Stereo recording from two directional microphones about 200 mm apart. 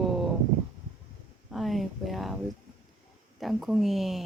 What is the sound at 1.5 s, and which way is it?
Speech, centre (ahead or behind).